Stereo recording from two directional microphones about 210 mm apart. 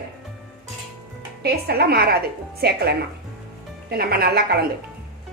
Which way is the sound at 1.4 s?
50° right (ahead or behind).